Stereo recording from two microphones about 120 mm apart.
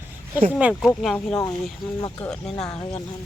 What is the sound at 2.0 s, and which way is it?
Speech, 30° left (ahead or behind).